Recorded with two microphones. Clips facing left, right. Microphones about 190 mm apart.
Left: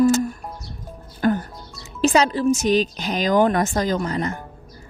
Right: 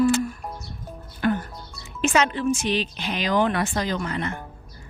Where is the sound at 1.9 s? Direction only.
35° left (ahead or behind).